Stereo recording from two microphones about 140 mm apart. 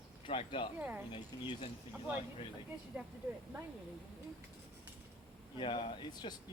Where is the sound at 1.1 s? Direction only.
40° left (ahead or behind).